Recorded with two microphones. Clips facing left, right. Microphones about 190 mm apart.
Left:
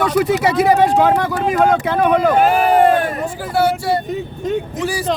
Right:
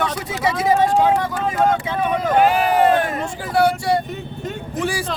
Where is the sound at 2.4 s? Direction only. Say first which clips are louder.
Left 2 dB; 45° left (ahead or behind).